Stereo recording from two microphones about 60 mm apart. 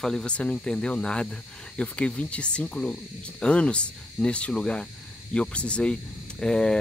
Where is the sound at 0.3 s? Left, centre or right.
Centre.